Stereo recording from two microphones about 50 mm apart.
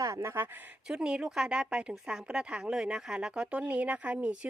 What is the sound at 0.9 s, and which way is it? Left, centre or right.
A woman's voice, centre.